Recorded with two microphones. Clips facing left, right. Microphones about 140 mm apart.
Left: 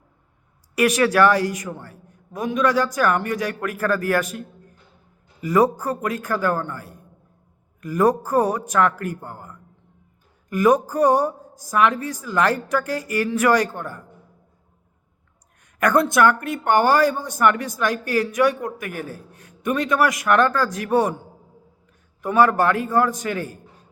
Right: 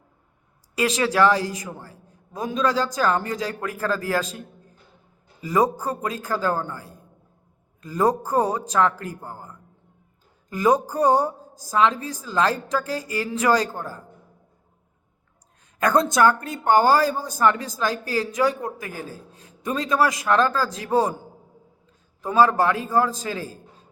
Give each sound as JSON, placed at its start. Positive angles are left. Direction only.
{"t": 0.8, "sound": "speech", "side_deg": -25}
{"t": 15.8, "sound": "speech", "side_deg": -25}
{"t": 22.2, "sound": "speech", "side_deg": -25}